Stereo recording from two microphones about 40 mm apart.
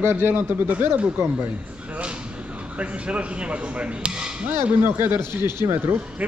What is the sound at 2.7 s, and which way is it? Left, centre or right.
Speech, right.